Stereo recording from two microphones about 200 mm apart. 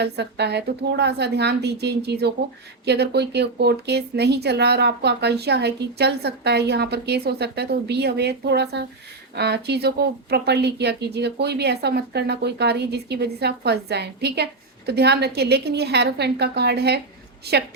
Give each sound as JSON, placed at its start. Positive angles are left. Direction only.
{"t": 0.0, "sound": "a woman's voice", "side_deg": -55}